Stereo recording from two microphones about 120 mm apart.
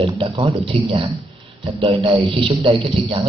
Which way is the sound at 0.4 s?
50° right (ahead or behind).